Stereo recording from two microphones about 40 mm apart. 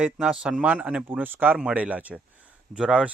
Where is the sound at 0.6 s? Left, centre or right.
Right.